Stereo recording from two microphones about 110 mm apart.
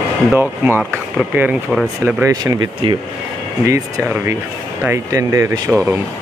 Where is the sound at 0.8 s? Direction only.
10° right (ahead or behind).